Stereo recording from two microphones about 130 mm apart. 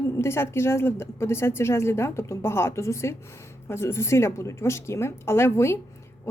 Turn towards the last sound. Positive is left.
turn(degrees=20)  # may be behind; listen again after turning